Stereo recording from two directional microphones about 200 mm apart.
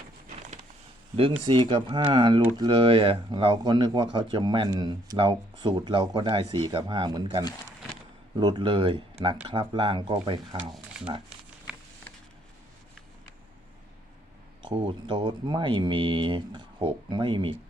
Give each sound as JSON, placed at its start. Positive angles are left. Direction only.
{"t": 1.5, "sound": "speech", "side_deg": -25}
{"t": 14.6, "sound": "speech", "side_deg": -25}